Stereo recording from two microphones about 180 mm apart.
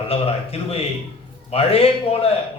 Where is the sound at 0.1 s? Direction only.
35° left (ahead or behind).